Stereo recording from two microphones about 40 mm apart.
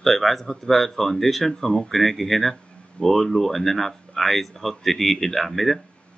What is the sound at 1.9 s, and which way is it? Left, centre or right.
Speech, centre.